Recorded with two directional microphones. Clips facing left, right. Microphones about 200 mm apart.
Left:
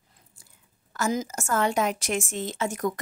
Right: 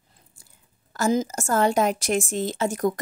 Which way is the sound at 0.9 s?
30° right (ahead or behind).